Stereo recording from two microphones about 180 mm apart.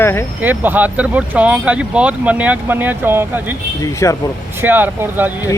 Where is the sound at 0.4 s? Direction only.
10° right (ahead or behind).